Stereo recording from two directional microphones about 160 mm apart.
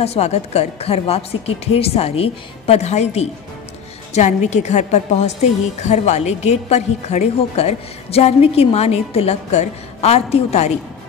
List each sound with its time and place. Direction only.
0.0 s a woman's voice: 40° left (ahead or behind)